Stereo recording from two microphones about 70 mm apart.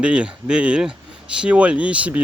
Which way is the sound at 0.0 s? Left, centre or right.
Centre.